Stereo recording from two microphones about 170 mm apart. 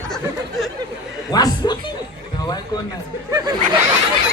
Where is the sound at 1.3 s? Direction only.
25° left (ahead or behind).